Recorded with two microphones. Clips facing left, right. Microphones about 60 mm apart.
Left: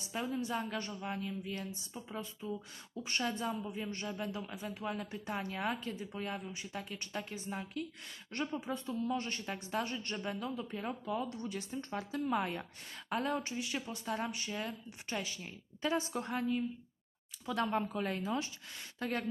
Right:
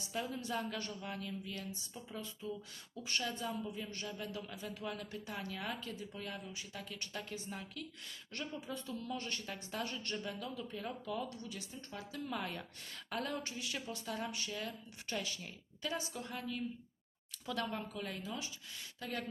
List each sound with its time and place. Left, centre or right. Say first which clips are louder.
0.1 s a woman's voice: left 3 dB; left
15.9 s speech: left 7 dB; left
17.4 s speech: left 6 dB; left